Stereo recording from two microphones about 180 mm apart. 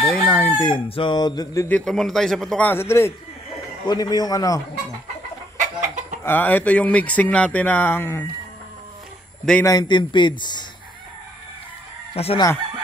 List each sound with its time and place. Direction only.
0.0 s chicken: 5° left (ahead or behind)
0.6 s speech: 25° left (ahead or behind)
1.9 s a man's voice: centre (ahead or behind); by 4.6 s 20° left (ahead or behind)
5.6 s chicken: 45° right (ahead or behind)
6.2 s speech: 10° left (ahead or behind)
9.7 s speech: 25° left (ahead or behind)
12.2 s chicken: 35° left (ahead or behind)